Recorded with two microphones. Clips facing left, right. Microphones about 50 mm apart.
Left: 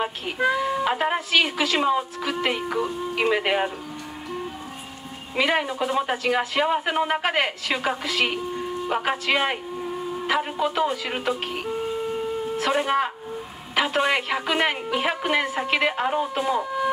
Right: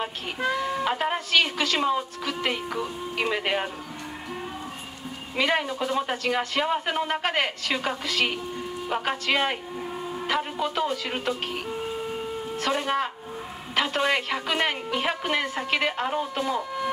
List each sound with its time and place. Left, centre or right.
0.0 s a man's voice: centre
5.3 s a man's voice: centre